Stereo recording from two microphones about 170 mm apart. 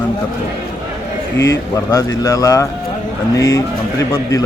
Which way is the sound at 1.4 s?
20° left (ahead or behind).